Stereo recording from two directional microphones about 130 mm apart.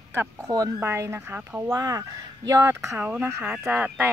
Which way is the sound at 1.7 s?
25° right (ahead or behind).